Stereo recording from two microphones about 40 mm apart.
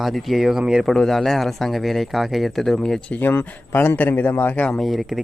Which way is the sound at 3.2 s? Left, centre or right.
Left.